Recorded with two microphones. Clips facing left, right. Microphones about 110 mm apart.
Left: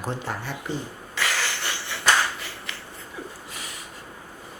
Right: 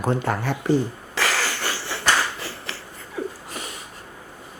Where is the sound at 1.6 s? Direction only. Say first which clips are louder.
Right 4 dB; 35° right (ahead or behind).